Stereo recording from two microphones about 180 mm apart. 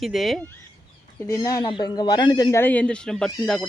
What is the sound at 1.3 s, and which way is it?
Speech, 20° left (ahead or behind).